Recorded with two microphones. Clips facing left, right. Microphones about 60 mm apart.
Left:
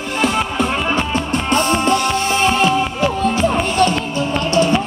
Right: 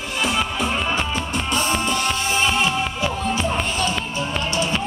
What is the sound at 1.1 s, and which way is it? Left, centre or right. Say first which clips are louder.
Music: left 6 dB; left.